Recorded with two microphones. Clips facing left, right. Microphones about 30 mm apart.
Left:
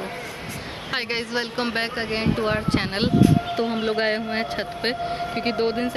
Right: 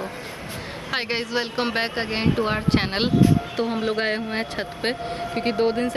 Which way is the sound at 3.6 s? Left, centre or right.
Centre.